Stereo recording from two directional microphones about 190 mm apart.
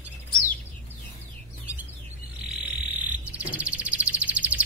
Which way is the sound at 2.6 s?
10° right (ahead or behind).